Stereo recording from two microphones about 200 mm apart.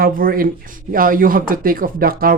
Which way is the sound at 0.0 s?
45° right (ahead or behind).